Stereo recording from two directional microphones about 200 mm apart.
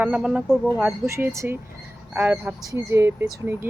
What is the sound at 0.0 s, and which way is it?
Speech, 5° right (ahead or behind).